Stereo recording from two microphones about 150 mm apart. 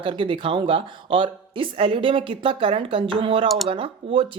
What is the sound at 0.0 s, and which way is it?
Speech, 35° right (ahead or behind).